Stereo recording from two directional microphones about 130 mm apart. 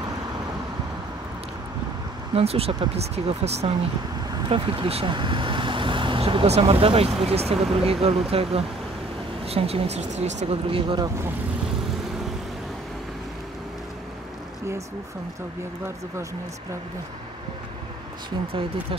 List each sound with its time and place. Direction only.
2.3 s speech: 50° right (ahead or behind)
10.7 s speech: 40° right (ahead or behind)
18.5 s speech: 45° right (ahead or behind)